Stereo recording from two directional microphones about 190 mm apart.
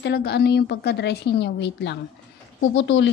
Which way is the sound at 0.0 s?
60° left (ahead or behind).